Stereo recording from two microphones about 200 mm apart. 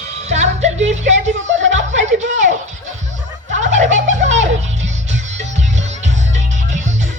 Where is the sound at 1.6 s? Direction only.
70° right (ahead or behind).